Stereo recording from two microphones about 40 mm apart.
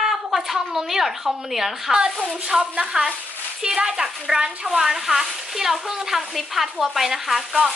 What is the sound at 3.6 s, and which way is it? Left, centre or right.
Speech, centre.